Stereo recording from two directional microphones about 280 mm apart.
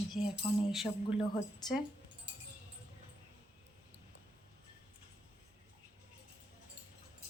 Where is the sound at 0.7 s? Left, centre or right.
Centre.